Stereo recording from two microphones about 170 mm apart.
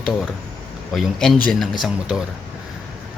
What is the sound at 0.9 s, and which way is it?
Speech, centre (ahead or behind).